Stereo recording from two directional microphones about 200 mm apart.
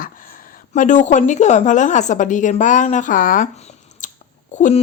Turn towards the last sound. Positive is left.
turn(degrees=35)  # may be behind; listen again after turning